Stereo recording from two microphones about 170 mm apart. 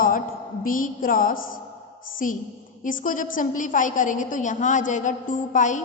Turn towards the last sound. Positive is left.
turn(degrees=50)  # may be behind; listen again after turning